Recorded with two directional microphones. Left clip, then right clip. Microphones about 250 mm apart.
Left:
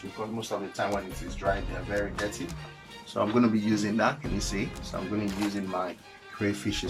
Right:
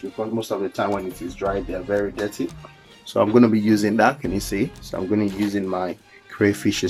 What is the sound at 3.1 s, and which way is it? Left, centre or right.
Speech, right.